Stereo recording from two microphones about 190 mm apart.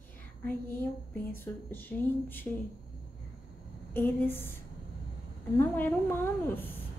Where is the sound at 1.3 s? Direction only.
10° left (ahead or behind).